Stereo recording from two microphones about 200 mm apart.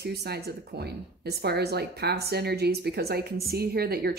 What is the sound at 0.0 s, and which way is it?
A woman's voice, 55° right (ahead or behind).